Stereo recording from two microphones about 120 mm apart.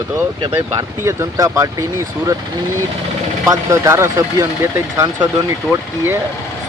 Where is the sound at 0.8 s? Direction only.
25° right (ahead or behind).